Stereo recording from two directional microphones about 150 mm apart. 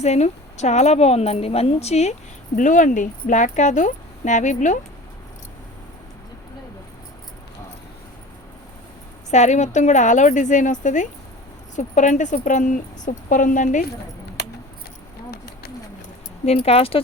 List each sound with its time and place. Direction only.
0.0 s a woman's voice: 50° left (ahead or behind)
2.6 s speech: 55° left (ahead or behind)
9.3 s speech: 50° left (ahead or behind)
16.5 s speech: 40° left (ahead or behind)